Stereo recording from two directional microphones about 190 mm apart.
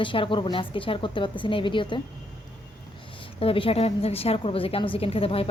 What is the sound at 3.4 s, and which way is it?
Speech, 30° left (ahead or behind).